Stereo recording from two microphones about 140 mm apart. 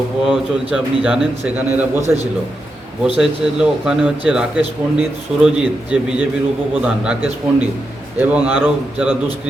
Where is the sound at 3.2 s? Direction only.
5° right (ahead or behind).